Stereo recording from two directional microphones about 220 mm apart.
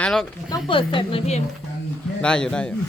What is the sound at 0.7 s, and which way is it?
Speech, 20° left (ahead or behind).